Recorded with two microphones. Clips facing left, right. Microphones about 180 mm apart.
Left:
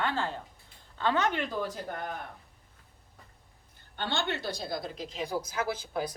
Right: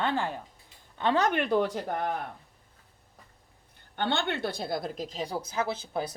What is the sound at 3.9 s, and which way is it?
A woman's voice, 60° right (ahead or behind).